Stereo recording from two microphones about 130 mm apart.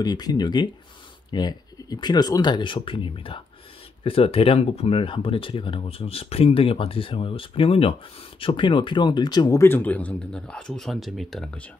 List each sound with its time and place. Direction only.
0.0 s speech: 30° left (ahead or behind); by 11.6 s 5° left (ahead or behind)